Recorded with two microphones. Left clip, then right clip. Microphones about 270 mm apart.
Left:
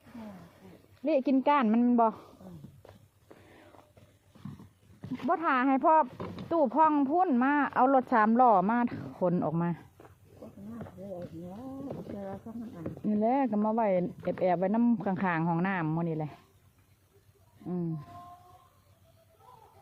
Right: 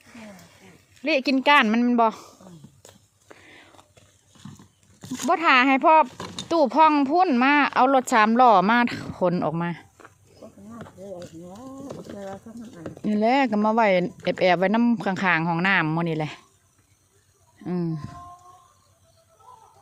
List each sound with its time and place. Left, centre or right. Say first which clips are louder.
1.0 s speech: right 6 dB; centre
4.9 s speech: right 7 dB; centre
10.8 s a sound: right 4 dB; centre
12.1 s speech: right 4 dB; centre
13.1 s speech: right 7 dB; centre